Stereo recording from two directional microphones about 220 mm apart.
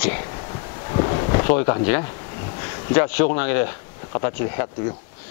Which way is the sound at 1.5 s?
15° left (ahead or behind).